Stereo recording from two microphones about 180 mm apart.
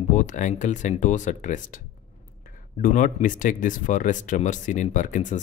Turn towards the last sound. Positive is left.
turn(degrees=45)  # may be behind; listen again after turning